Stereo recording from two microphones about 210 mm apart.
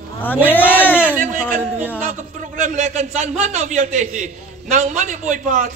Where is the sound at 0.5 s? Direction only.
10° left (ahead or behind).